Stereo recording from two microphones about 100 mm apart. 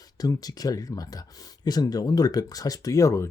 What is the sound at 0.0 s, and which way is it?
Speech, 40° left (ahead or behind).